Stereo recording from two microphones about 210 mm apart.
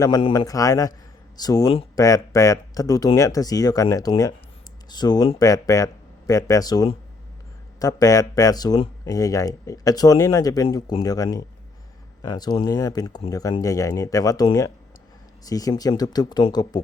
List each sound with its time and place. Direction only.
0.0 s speech: 20° left (ahead or behind)